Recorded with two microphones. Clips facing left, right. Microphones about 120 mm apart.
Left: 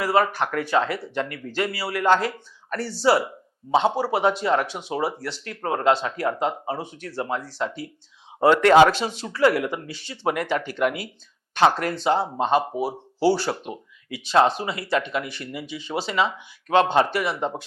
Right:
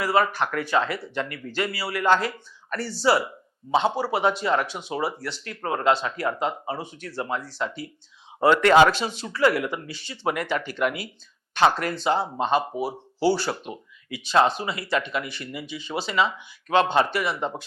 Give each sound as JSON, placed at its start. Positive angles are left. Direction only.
{"t": 0.0, "sound": "speech", "side_deg": 50}